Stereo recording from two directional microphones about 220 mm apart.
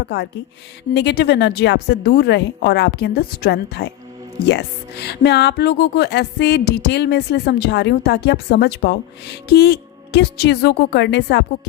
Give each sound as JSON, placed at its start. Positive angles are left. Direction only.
{"t": 0.0, "sound": "speech", "side_deg": 50}